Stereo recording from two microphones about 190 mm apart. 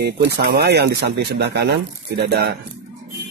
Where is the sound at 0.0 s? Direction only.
60° right (ahead or behind).